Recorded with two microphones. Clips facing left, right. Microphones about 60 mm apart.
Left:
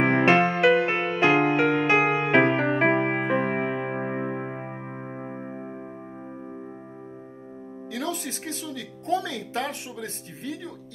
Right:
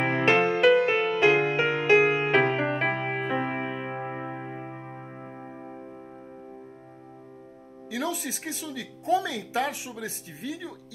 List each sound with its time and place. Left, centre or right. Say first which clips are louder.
0.0 s music: left 3 dB; left
7.9 s music: even; centre
9.1 s a woman's voice: right 1 dB; centre